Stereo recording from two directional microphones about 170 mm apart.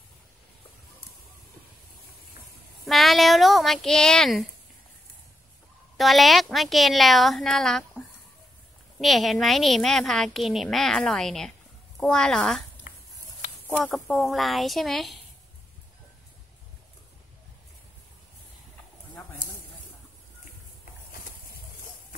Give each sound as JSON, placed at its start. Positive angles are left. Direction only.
{"t": 2.8, "sound": "a woman's voice", "side_deg": 0}
{"t": 5.9, "sound": "a woman's voice", "side_deg": 0}
{"t": 9.0, "sound": "a woman's voice", "side_deg": 0}
{"t": 12.9, "sound": "a sound", "side_deg": 55}
{"t": 13.7, "sound": "a woman's voice", "side_deg": 5}